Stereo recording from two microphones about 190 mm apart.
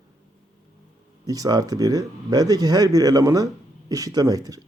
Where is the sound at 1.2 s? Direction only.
20° right (ahead or behind).